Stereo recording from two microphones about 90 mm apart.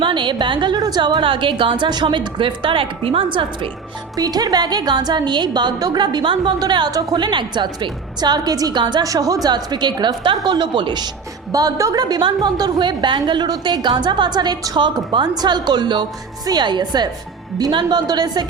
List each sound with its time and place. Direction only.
0.0 s a woman's voice: 65° right (ahead or behind)
0.8 s a woman's voice: 50° right (ahead or behind)
1.2 s a woman's voice: 70° right (ahead or behind)
4.2 s a woman's voice: 45° right (ahead or behind); by 6.5 s 65° right (ahead or behind)
6.6 s a woman's voice: 55° right (ahead or behind)
7.3 s a woman's voice: 60° right (ahead or behind)
9.0 s a woman's voice: 40° right (ahead or behind); by 11.1 s 55° right (ahead or behind)
11.5 s a woman's voice: 40° right (ahead or behind)
14.8 s a woman's voice: 60° right (ahead or behind)